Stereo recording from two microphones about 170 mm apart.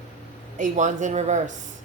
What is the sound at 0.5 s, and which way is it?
Speech, 45° right (ahead or behind).